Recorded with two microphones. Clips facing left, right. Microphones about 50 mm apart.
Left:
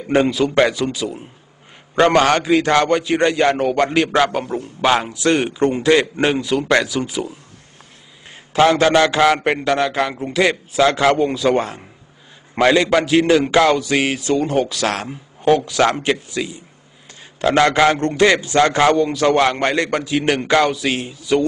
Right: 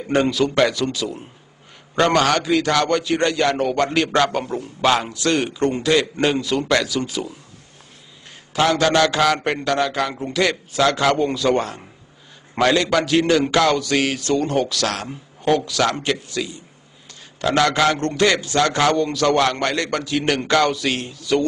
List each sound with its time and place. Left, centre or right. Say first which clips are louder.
0.1 s speech: left 3 dB; centre
2.0 s a man's voice: left 3 dB; left; by 4.6 s centre
5.1 s a man's voice: left 3 dB; left
8.5 s a man's voice: left 4 dB; left; by 10.4 s centre
10.4 s a man's voice: left 3 dB; centre
11.1 s speech: left 2 dB; centre
11.5 s a man's voice: left 2 dB; left